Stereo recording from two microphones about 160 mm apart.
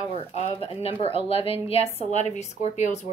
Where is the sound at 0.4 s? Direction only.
40° left (ahead or behind).